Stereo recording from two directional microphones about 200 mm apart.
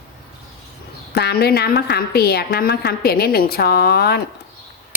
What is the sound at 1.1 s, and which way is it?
A woman's voice, 55° left (ahead or behind).